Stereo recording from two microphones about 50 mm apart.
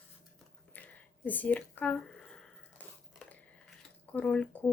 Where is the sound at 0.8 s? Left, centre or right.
Left.